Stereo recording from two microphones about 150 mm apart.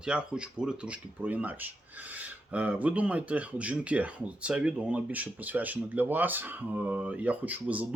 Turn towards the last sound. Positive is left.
turn(degrees=-10)  # may be behind; listen again after turning